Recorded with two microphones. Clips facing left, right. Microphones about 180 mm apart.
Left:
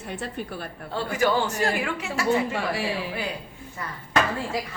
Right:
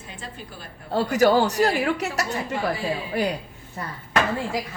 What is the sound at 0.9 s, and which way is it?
Speech, 40° right (ahead or behind).